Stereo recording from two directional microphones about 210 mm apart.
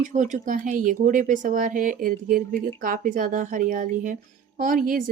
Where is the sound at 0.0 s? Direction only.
35° right (ahead or behind).